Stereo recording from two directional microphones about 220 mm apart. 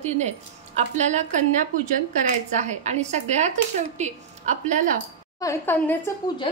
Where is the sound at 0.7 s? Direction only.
30° right (ahead or behind).